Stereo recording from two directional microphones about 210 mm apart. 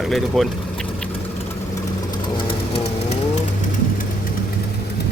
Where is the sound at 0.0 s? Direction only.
Centre (ahead or behind).